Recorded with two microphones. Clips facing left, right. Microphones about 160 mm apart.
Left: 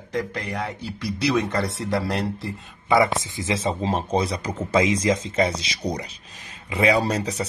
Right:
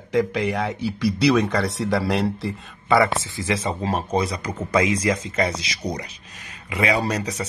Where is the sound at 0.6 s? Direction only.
75° right (ahead or behind).